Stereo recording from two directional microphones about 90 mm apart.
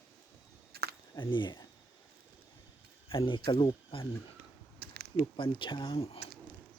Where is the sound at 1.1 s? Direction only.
60° left (ahead or behind).